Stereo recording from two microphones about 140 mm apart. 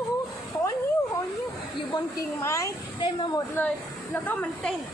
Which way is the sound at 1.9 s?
30° left (ahead or behind).